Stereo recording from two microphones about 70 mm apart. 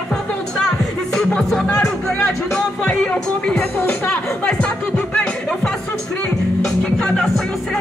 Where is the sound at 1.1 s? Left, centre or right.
Centre.